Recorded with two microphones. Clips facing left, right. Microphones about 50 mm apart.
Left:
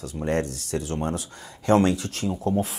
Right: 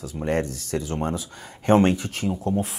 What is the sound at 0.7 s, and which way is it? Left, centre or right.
Speech, right.